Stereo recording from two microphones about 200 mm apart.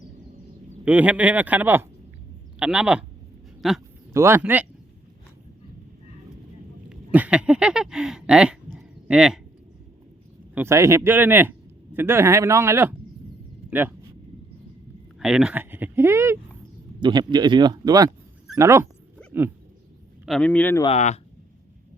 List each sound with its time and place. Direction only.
0.9 s speech: 5° right (ahead or behind)
4.1 s speech: 15° right (ahead or behind)
6.9 s a sound: 5° right (ahead or behind)
9.0 s speech: 5° right (ahead or behind)
10.5 s speech: 10° right (ahead or behind)
15.2 s speech: 5° right (ahead or behind)
19.2 s dog: 5° left (ahead or behind)
20.2 s speech: 5° left (ahead or behind)
20.8 s speech: 35° left (ahead or behind)